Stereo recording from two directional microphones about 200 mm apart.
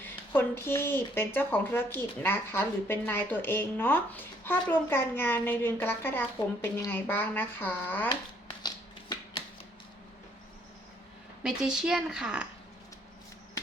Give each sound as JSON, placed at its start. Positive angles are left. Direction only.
{"t": 0.0, "sound": "speech", "side_deg": 10}
{"t": 8.6, "sound": "shuffling cards", "side_deg": 20}
{"t": 11.4, "sound": "speech", "side_deg": -5}